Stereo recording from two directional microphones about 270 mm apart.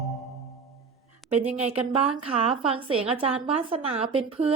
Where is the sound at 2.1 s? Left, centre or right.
Right.